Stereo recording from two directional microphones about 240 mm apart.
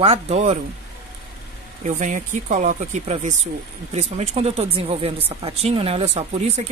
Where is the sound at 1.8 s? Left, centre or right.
Right.